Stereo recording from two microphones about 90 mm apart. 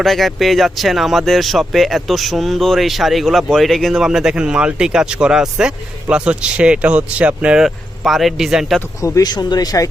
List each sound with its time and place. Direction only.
0.0 s speech: centre (ahead or behind)
9.0 s speech: 40° left (ahead or behind)